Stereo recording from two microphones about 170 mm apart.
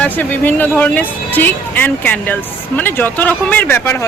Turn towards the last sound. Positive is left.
turn(degrees=10)  # may be behind; listen again after turning